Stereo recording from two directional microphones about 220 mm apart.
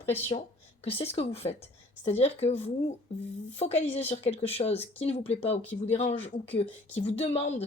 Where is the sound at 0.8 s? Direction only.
25° left (ahead or behind).